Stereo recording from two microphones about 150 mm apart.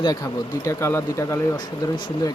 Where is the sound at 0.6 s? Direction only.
20° left (ahead or behind).